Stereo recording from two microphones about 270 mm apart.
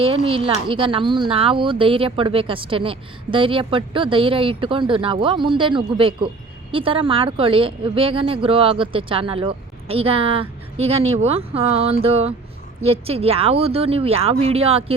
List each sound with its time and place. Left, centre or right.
0.0 s speech: centre